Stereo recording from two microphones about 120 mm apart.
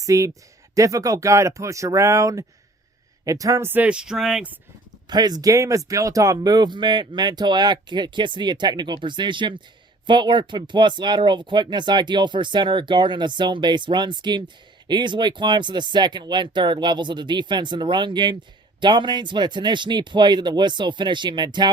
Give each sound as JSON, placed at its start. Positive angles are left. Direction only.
{"t": 0.0, "sound": "speech", "side_deg": -25}
{"t": 3.7, "sound": "speech", "side_deg": -10}
{"t": 5.0, "sound": "speech", "side_deg": -35}